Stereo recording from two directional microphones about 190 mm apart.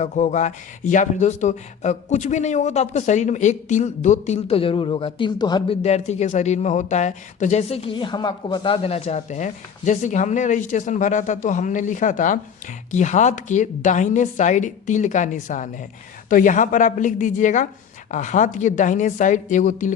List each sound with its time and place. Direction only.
0.0 s speech: 40° left (ahead or behind); by 5.7 s 20° left (ahead or behind)
5.8 s a woman's voice: 35° left (ahead or behind)